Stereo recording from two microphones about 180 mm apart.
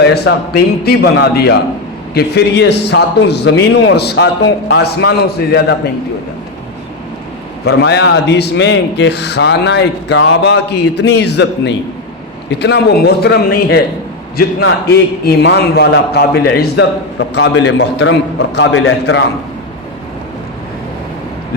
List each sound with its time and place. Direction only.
0.9 s a man's voice: 65° left (ahead or behind)
7.6 s a man's voice: 65° left (ahead or behind)